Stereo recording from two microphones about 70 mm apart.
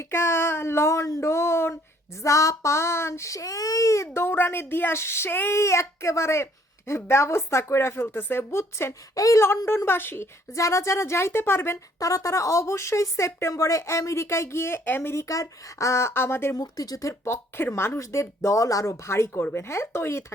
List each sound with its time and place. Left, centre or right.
0.0 s speech: left
2.2 s speech: left
5.5 s speech: left
9.1 s speech: left
9.6 s speech: left
10.5 s speech: left
11.9 s speech: left
16.6 s speech: left
17.2 s speech: left